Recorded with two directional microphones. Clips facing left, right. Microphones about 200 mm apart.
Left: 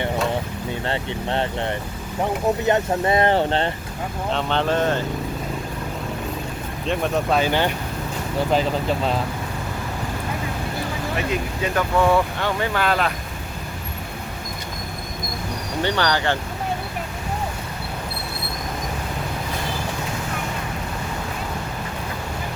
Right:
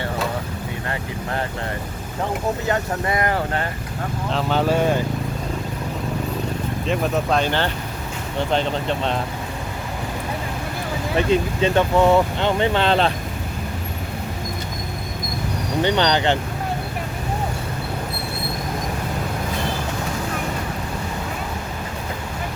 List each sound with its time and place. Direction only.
0.9 s speech: 25° left (ahead or behind)
2.6 s speech: 25° left (ahead or behind)
4.3 s speech: 5° right (ahead or behind)
6.8 s speech: centre (ahead or behind)
11.3 s speech: 25° right (ahead or behind)
15.8 s speech: 20° right (ahead or behind)